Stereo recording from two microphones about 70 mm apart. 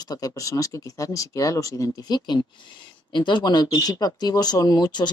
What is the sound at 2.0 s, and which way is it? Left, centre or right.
Speech, left.